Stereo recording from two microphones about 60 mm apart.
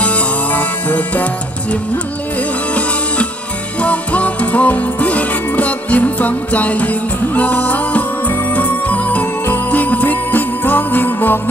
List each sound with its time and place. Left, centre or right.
0.0 s music: left
3.8 s music: left